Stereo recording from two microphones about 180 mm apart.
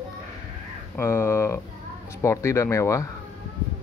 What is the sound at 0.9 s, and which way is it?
Speech, 15° left (ahead or behind).